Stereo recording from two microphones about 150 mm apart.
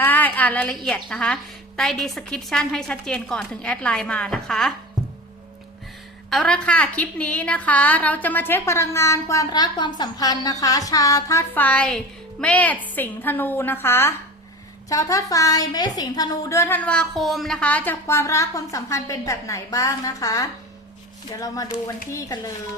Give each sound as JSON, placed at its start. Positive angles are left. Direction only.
{"t": 0.0, "sound": "a woman's voice", "side_deg": 10}
{"t": 6.3, "sound": "a woman's voice", "side_deg": 5}